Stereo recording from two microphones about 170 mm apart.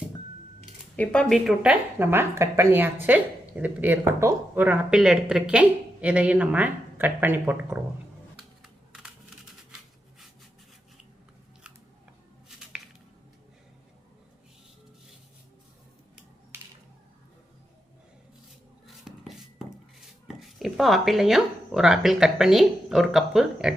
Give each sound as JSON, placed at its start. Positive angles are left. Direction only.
{"t": 0.9, "sound": "a woman's voice", "side_deg": 5}
{"t": 2.0, "sound": "a woman's voice", "side_deg": -15}
{"t": 8.4, "sound": "typing", "side_deg": -5}
{"t": 19.0, "sound": "a sound", "side_deg": -5}
{"t": 20.2, "sound": "speech", "side_deg": 0}